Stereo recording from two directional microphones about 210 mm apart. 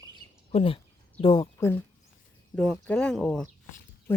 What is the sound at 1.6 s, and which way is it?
Speech, 10° left (ahead or behind).